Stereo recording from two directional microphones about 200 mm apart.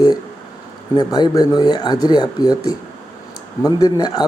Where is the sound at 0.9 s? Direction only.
20° left (ahead or behind).